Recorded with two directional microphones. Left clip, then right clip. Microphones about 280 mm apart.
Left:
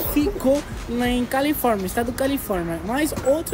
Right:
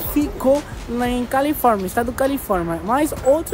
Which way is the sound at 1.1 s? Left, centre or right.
Centre.